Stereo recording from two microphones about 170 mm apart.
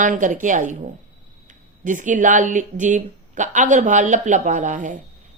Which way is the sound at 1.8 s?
50° right (ahead or behind).